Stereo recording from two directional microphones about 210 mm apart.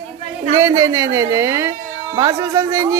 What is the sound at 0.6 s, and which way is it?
A woman's voice, 15° right (ahead or behind).